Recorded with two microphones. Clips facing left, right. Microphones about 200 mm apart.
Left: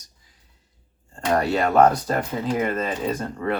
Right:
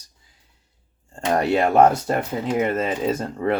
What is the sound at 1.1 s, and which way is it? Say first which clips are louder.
Speech: right 2 dB; 25° right (ahead or behind).